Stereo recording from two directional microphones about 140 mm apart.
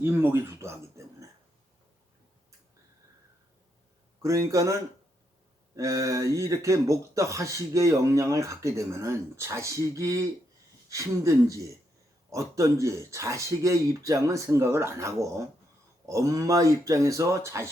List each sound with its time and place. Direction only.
0.0 s speech: 15° right (ahead or behind)
4.2 s speech: 25° right (ahead or behind)